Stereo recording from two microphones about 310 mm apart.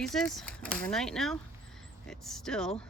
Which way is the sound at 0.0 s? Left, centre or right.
Centre.